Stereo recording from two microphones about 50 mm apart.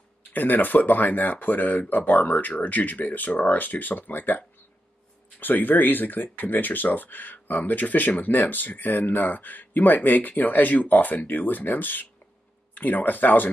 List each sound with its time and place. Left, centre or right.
0.3 s speech: left